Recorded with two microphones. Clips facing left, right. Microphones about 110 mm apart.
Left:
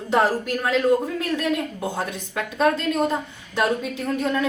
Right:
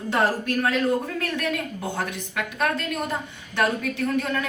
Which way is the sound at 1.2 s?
25° left (ahead or behind).